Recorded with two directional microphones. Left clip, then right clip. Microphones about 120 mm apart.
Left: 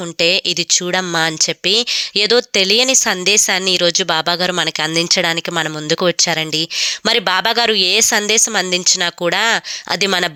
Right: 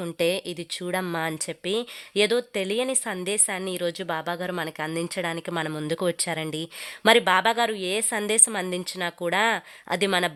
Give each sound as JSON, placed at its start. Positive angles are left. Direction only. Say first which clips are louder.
{"t": 0.2, "sound": "speech", "louder": "left 12 dB", "side_deg": 15}